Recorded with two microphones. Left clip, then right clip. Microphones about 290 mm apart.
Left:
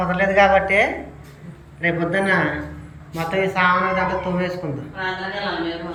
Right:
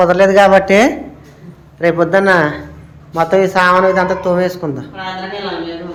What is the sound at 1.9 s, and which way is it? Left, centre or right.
A man's voice, centre.